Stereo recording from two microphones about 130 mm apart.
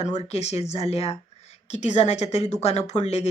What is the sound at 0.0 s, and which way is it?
Speech, 55° left (ahead or behind).